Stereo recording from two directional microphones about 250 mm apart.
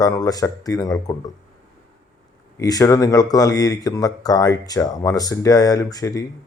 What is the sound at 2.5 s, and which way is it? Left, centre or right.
Speech, centre.